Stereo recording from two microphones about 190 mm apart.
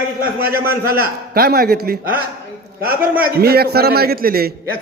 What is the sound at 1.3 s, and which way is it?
Speech, 55° right (ahead or behind).